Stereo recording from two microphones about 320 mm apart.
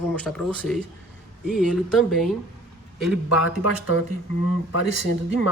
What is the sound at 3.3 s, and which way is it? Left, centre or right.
Speech, left.